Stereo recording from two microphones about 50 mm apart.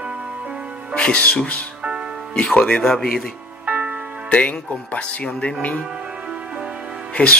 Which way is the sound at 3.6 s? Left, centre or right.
Right.